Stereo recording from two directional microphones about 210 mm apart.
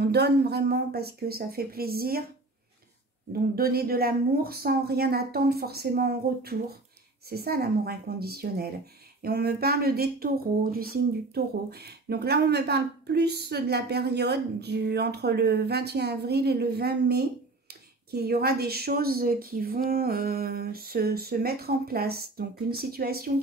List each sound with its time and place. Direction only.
0.0 s speech: 50° right (ahead or behind)
3.5 s speech: 45° right (ahead or behind)